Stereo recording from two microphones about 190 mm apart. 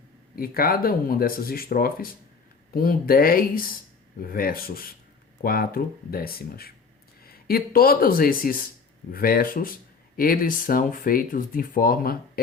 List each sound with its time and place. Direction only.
0.3 s speech: 50° left (ahead or behind)